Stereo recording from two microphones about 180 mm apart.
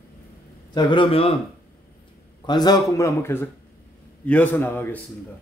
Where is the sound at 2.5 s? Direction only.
20° left (ahead or behind).